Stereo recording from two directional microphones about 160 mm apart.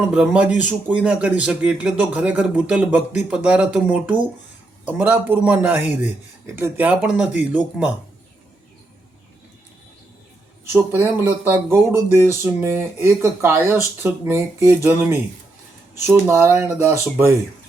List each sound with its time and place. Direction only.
0.1 s speech: 5° right (ahead or behind)
10.7 s speech: 15° right (ahead or behind)